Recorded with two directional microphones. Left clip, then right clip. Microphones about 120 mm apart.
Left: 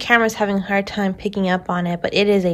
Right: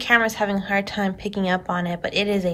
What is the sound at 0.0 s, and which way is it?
A woman's voice, 20° left (ahead or behind).